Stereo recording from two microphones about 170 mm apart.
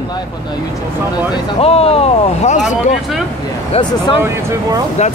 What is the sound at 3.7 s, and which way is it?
Speech, 35° left (ahead or behind).